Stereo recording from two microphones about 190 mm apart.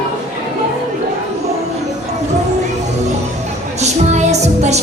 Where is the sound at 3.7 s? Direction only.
35° right (ahead or behind).